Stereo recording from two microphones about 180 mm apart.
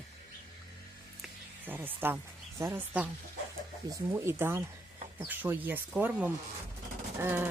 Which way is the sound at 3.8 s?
25° right (ahead or behind).